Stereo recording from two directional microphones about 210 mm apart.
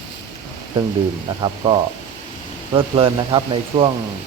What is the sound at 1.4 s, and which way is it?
Speech, 25° right (ahead or behind).